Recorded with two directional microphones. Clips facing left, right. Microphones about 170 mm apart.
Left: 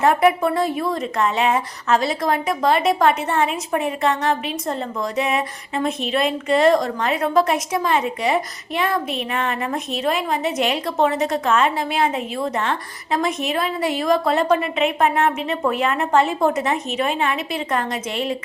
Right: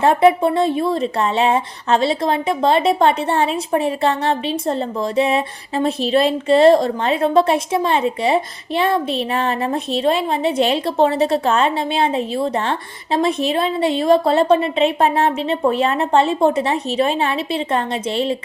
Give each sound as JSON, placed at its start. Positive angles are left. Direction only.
{"t": 0.0, "sound": "speech", "side_deg": -25}